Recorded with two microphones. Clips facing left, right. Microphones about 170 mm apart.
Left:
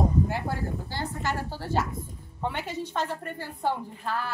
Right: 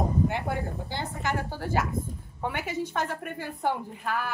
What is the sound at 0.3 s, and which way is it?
A woman's voice, 20° right (ahead or behind).